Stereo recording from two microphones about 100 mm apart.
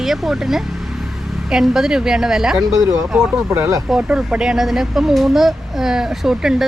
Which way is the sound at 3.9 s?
10° right (ahead or behind).